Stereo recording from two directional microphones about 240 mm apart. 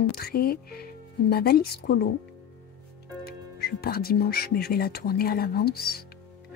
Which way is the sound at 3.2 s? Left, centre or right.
Left.